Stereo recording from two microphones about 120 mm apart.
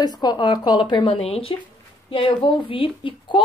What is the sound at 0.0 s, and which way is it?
A woman's voice, 35° left (ahead or behind).